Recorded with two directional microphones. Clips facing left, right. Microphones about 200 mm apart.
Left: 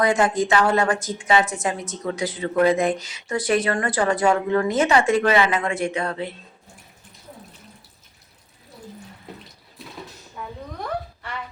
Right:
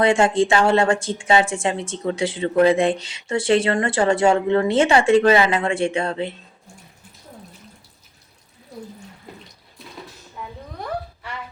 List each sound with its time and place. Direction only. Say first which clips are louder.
0.0 s a woman's voice: right 3 dB; 30° right (ahead or behind)